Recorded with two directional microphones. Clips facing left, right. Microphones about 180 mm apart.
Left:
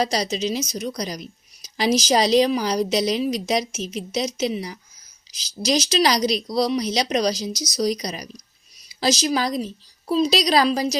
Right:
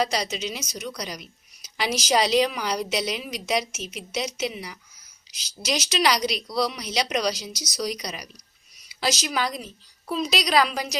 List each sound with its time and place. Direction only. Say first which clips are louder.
0.0 s a woman's voice: left 3 dB; 35° left (ahead or behind)